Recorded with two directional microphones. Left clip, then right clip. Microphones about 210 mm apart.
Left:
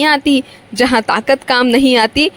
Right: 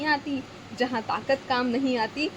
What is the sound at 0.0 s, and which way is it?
A woman's voice, 50° left (ahead or behind).